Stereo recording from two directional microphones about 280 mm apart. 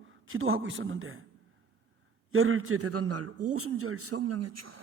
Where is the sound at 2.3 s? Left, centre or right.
Right.